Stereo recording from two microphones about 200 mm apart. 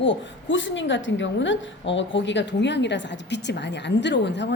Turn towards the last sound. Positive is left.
turn(degrees=60)  # may be behind; listen again after turning